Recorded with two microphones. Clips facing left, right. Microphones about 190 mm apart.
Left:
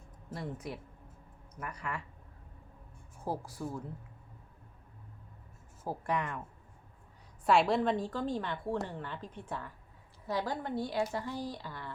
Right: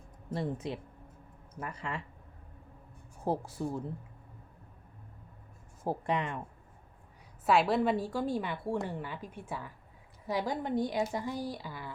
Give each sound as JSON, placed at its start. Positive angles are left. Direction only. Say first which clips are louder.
{"t": 0.3, "sound": "speech", "louder": "right 5 dB", "side_deg": -25}
{"t": 3.2, "sound": "speech", "louder": "right 4 dB", "side_deg": -25}
{"t": 5.8, "sound": "speech", "louder": "right 2 dB", "side_deg": -25}
{"t": 7.4, "sound": "a woman's voice", "louder": "even", "side_deg": 0}